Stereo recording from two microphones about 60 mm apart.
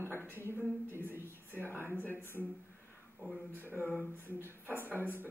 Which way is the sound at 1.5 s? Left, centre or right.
Left.